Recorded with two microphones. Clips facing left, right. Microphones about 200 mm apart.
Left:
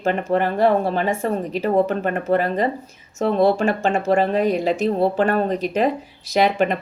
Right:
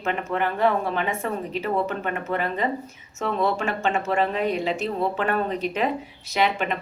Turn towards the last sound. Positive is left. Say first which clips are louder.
# left 6 dB
turn(degrees=40)  # may be behind; listen again after turning